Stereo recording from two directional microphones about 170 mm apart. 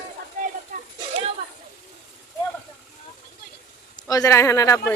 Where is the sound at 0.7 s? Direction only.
50° right (ahead or behind).